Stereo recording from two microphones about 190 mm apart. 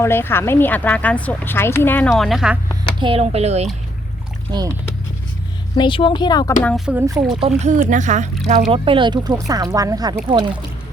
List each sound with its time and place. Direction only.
0.0 s speech: 10° left (ahead or behind)
3.0 s speech: 30° right (ahead or behind)
5.7 s speech: 25° left (ahead or behind)
6.6 s speech: 5° left (ahead or behind)
6.8 s speech: 10° right (ahead or behind)
7.3 s speech: 35° right (ahead or behind)
8.7 s speech: 25° right (ahead or behind)